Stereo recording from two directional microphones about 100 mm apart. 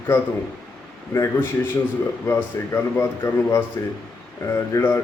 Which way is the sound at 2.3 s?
25° left (ahead or behind).